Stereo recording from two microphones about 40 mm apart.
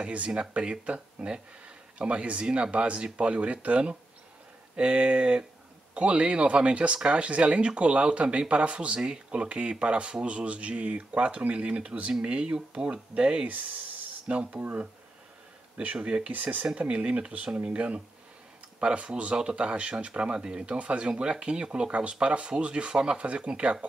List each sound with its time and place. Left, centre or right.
0.0 s speech: right
14.6 s speech: right